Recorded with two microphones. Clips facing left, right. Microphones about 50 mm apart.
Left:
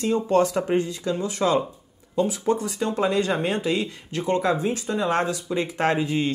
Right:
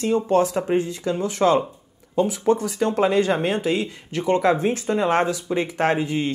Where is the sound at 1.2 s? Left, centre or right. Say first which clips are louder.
Right 4 dB; right.